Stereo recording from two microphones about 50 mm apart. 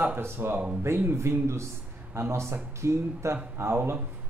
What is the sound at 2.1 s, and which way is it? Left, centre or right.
Speech, right.